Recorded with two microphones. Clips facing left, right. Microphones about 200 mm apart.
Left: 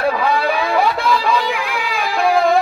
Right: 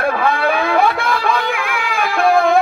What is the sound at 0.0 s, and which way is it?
Music, 55° right (ahead or behind).